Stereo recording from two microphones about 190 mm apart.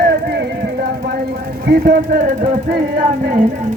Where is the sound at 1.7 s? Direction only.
50° right (ahead or behind).